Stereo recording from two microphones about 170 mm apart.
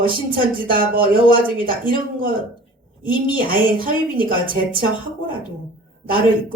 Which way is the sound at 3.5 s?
55° right (ahead or behind).